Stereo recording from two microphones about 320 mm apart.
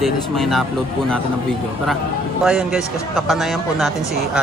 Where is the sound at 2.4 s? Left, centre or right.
Centre.